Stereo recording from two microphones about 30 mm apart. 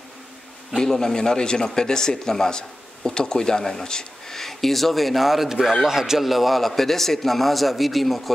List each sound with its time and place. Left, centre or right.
0.7 s speech: centre
4.4 s a man's voice: centre